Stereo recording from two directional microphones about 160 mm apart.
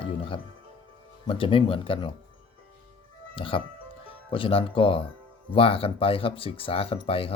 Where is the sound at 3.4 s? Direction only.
35° left (ahead or behind).